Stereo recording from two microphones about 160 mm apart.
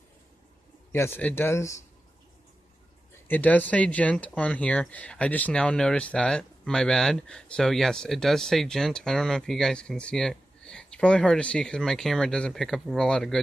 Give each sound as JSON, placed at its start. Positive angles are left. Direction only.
{"t": 0.9, "sound": "speech", "side_deg": 15}
{"t": 3.3, "sound": "speech", "side_deg": 10}